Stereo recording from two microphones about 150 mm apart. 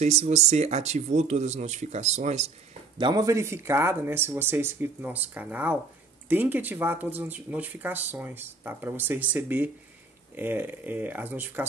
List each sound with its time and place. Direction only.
0.0 s speech: 50° right (ahead or behind)
3.0 s speech: 25° right (ahead or behind)